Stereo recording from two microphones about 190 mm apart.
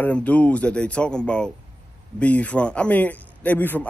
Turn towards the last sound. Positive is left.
turn(degrees=10)  # may be behind; listen again after turning